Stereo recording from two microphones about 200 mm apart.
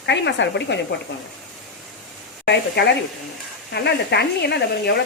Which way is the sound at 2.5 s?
60° left (ahead or behind).